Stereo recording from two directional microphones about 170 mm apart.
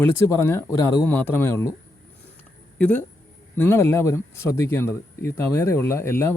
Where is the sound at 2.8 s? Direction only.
10° left (ahead or behind).